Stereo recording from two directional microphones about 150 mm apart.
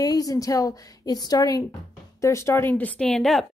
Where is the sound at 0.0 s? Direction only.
25° left (ahead or behind); by 3.4 s centre (ahead or behind).